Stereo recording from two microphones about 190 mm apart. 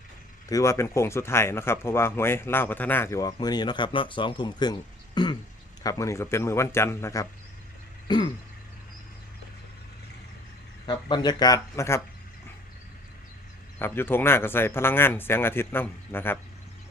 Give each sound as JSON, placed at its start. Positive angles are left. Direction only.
{"t": 0.4, "sound": "speech", "side_deg": 15}
{"t": 8.0, "sound": "a sound", "side_deg": 25}
{"t": 10.8, "sound": "speech", "side_deg": 20}
{"t": 13.7, "sound": "speech", "side_deg": 10}